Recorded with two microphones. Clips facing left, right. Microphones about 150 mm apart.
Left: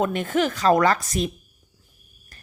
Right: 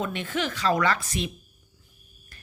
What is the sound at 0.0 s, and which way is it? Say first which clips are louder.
A woman's voice: left 7 dB; 45° left (ahead or behind).